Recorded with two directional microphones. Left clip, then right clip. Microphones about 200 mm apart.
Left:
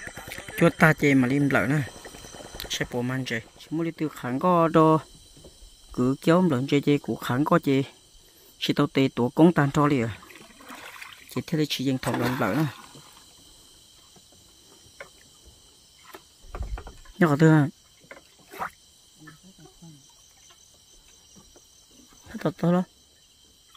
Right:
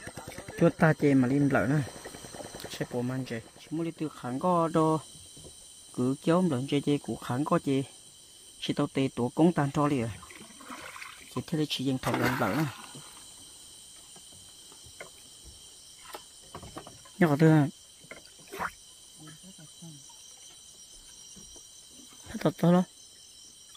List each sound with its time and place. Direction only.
0.0 s speech: centre (ahead or behind); by 10.1 s 30° left (ahead or behind)
10.2 s a sound: 20° left (ahead or behind)
12.1 s speech: 5° left (ahead or behind)
17.2 s speech: 20° left (ahead or behind)
22.3 s speech: centre (ahead or behind)